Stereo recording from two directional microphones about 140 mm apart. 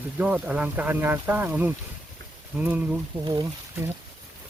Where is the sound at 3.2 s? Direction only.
30° right (ahead or behind).